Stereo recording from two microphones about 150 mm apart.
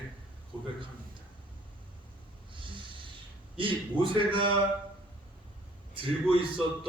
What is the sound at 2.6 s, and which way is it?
Snort, 35° right (ahead or behind).